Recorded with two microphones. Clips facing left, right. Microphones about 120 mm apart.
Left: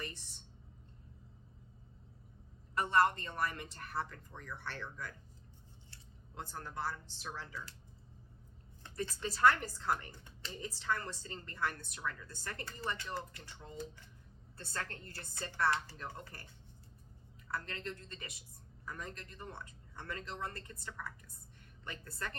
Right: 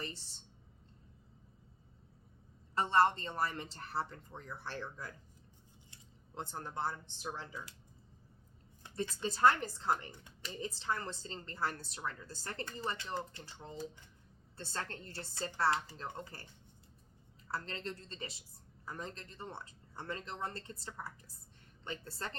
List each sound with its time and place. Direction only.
0.0 s a woman's voice: 30° right (ahead or behind)
2.7 s a woman's voice: 30° right (ahead or behind)
8.8 s a woman's voice: 25° right (ahead or behind)
17.5 s a woman's voice: 30° right (ahead or behind)